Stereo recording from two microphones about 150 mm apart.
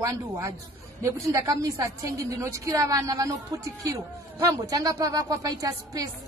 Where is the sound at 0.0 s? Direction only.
20° right (ahead or behind).